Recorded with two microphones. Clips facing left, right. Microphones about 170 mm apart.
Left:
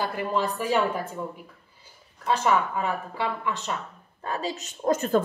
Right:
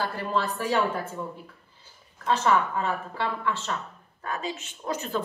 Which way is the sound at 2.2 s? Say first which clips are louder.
Even; 10° left (ahead or behind).